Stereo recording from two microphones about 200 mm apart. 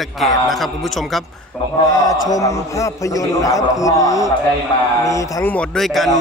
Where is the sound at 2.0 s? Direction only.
15° left (ahead or behind).